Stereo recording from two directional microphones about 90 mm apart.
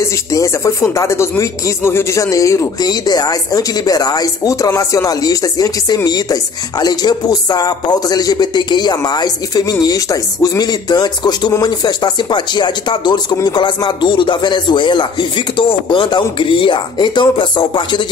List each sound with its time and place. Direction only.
0.3 s speech: 35° left (ahead or behind)
2.9 s speech: 45° left (ahead or behind); by 18.0 s 65° left (ahead or behind)